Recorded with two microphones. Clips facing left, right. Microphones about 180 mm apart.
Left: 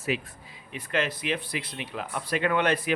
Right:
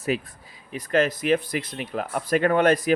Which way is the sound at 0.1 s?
45° right (ahead or behind).